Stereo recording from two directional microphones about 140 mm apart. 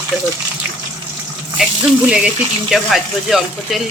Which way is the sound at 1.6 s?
5° right (ahead or behind).